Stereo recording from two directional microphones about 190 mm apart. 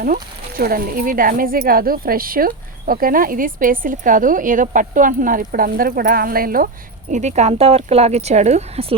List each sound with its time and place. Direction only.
0.0 s speech: 50° right (ahead or behind)
7.1 s speech: 40° right (ahead or behind)